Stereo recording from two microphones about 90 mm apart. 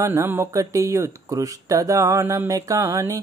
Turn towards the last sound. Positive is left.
turn(degrees=-40)  # may be behind; listen again after turning